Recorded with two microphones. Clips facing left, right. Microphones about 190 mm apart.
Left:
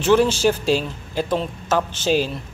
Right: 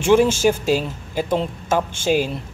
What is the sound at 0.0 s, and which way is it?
A man's voice, 10° right (ahead or behind).